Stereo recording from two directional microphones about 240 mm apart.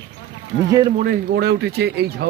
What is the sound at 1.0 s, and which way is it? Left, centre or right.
Speech, right.